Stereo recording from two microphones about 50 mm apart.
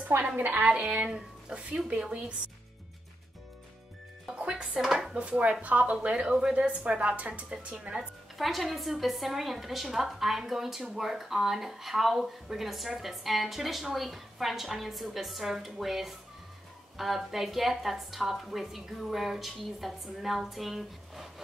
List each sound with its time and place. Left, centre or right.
0.1 s a woman's voice: right
0.6 s a woman's voice: right
4.5 s speech: centre
5.1 s a woman's voice: right
7.5 s a woman's voice: centre
8.4 s a woman's voice: centre